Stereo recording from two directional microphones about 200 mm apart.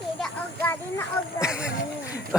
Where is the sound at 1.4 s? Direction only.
5° right (ahead or behind).